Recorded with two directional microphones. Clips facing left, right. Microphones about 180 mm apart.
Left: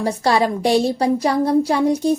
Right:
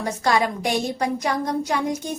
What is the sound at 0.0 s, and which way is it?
A woman's voice, 30° left (ahead or behind).